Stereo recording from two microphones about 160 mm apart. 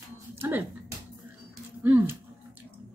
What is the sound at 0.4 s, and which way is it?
Music, 10° right (ahead or behind).